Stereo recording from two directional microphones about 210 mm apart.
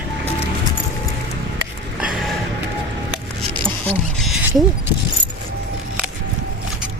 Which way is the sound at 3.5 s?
25° right (ahead or behind).